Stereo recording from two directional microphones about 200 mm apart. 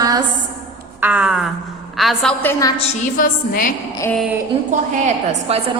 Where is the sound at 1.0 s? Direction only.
5° right (ahead or behind).